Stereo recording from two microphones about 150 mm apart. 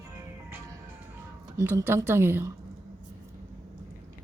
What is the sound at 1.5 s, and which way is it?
Speech, 15° right (ahead or behind).